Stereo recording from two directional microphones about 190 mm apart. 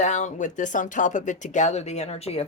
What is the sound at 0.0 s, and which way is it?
Speech, 40° left (ahead or behind).